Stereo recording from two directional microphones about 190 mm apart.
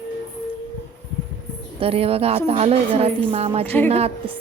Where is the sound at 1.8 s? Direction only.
30° right (ahead or behind).